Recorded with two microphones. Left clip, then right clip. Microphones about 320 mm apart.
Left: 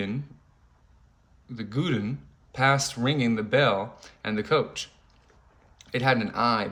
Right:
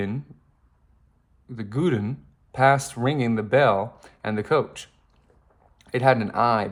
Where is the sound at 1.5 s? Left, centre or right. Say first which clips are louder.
Right 4 dB; right.